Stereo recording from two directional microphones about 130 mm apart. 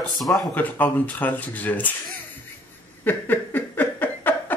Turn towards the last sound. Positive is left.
turn(degrees=15)  # may be behind; listen again after turning